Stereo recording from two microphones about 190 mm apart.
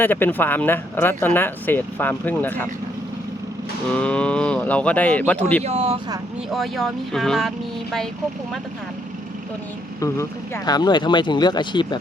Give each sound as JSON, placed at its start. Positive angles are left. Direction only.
{"t": 0.0, "sound": "speech", "side_deg": 10}
{"t": 3.9, "sound": "speech", "side_deg": 5}
{"t": 5.6, "sound": "speech", "side_deg": -30}
{"t": 6.5, "sound": "speech", "side_deg": 0}
{"t": 10.0, "sound": "speech", "side_deg": 15}